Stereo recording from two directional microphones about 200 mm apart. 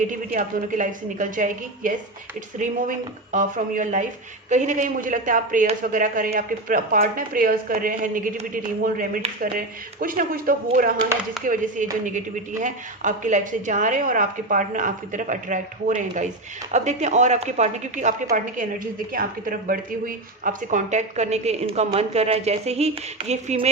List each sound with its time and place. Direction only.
0.1 s a woman's voice: 40° right (ahead or behind)